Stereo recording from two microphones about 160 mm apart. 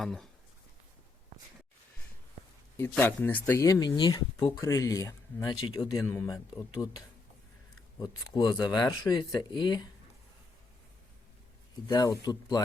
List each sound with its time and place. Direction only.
0.0 s speech: centre (ahead or behind)
2.9 s speech: 10° left (ahead or behind); by 6.0 s 30° left (ahead or behind)
6.0 s speech: 15° left (ahead or behind)
11.9 s speech: 25° left (ahead or behind)